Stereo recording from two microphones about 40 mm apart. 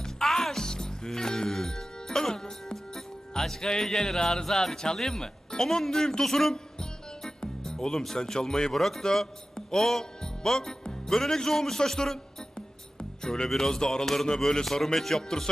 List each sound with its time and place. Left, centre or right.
0.0 s music: centre
3.8 s speech: centre
6.2 s music: centre
8.7 s speech: centre
13.0 s music: centre
13.5 s speech: centre